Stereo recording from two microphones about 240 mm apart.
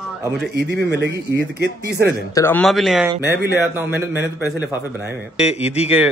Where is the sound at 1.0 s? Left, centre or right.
Right.